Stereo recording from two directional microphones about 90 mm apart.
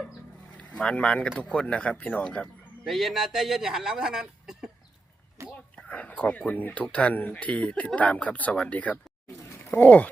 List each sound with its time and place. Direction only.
0.5 s speech: 15° left (ahead or behind)
2.8 s speech: centre (ahead or behind)
5.4 s whispering: 35° right (ahead or behind)
5.7 s speech: 15° left (ahead or behind)
9.5 s a sound: 20° left (ahead or behind)